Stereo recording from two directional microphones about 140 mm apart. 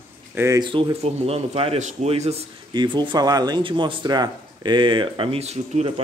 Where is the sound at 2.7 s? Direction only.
30° right (ahead or behind).